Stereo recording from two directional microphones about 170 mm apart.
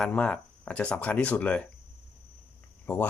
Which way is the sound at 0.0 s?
5° left (ahead or behind).